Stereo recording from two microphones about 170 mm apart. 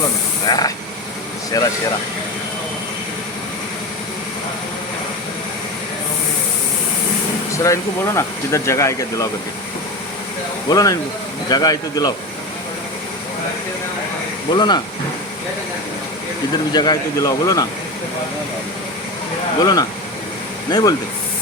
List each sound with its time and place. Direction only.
0.4 s speech: 20° left (ahead or behind)
7.5 s speech: 20° left (ahead or behind)
10.7 s speech: 20° left (ahead or behind)
14.5 s speech: 25° left (ahead or behind)
16.7 s speech: 25° left (ahead or behind)
19.6 s speech: 20° left (ahead or behind)